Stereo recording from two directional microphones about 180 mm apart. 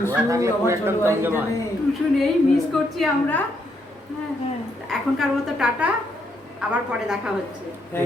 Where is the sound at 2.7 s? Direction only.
5° left (ahead or behind).